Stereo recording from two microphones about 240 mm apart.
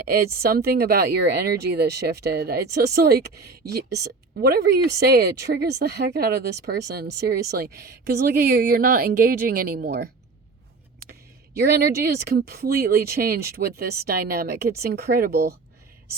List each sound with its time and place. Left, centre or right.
0.3 s speech: right
11.5 s speech: right